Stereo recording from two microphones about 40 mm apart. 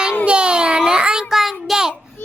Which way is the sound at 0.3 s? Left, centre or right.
Right.